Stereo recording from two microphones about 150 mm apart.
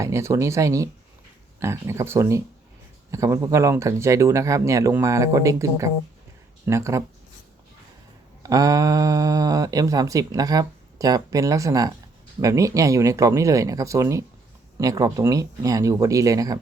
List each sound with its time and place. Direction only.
0.0 s speech: 20° right (ahead or behind)
8.4 s speech: 25° right (ahead or behind)